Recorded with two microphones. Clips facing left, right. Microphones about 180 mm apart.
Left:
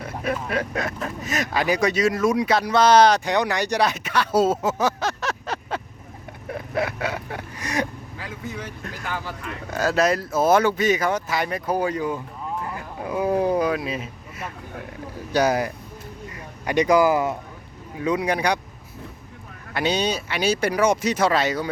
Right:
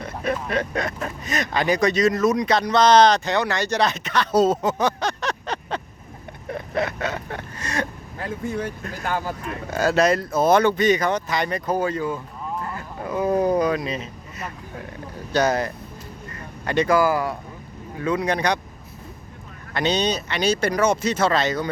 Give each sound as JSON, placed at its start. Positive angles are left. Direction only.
{"t": 0.0, "sound": "speech", "side_deg": 5}
{"t": 6.5, "sound": "vehicle", "side_deg": 5}
{"t": 8.2, "sound": "speech", "side_deg": -50}
{"t": 9.6, "sound": "speech", "side_deg": 0}
{"t": 19.7, "sound": "speech", "side_deg": 10}